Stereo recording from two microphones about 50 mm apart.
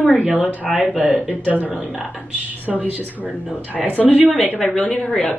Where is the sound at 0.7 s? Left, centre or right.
Centre.